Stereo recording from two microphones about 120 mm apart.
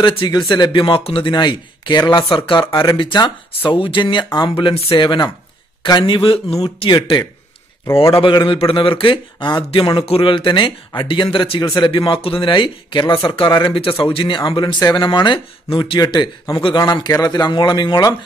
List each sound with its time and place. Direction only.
0.3 s speech: 35° left (ahead or behind)
7.8 s a man's voice: 25° left (ahead or behind)
8.1 s speech: 45° left (ahead or behind)